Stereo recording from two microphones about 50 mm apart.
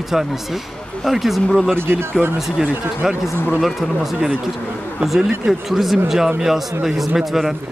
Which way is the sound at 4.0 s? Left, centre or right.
Centre.